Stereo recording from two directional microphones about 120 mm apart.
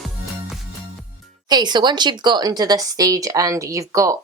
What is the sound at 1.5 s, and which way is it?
Speech, 35° right (ahead or behind).